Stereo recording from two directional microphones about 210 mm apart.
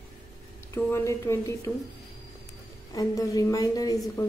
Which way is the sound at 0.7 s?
10° left (ahead or behind).